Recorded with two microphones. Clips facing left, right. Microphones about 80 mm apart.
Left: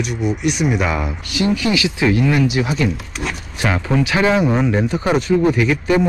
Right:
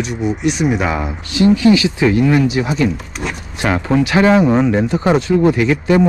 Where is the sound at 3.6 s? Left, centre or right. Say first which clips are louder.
Right 3 dB; right.